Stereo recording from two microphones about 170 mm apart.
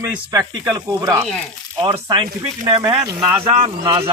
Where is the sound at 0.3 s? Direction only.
25° right (ahead or behind).